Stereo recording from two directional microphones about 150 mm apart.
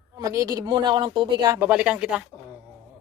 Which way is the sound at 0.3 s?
20° right (ahead or behind).